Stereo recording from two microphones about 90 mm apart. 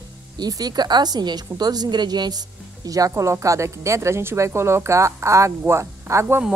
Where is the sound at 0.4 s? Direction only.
50° right (ahead or behind).